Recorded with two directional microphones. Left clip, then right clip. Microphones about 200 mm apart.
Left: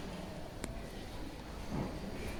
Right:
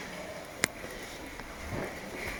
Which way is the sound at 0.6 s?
40° right (ahead or behind).